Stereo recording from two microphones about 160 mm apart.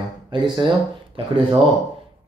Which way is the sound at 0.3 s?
30° right (ahead or behind).